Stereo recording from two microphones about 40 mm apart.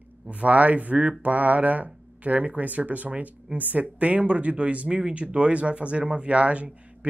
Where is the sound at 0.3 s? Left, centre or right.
Right.